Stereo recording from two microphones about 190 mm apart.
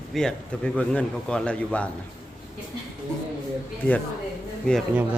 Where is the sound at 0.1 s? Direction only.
5° left (ahead or behind).